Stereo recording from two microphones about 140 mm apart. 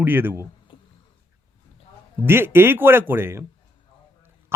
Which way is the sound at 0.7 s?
35° left (ahead or behind).